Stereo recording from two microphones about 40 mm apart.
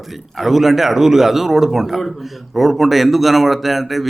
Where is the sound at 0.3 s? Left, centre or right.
Centre.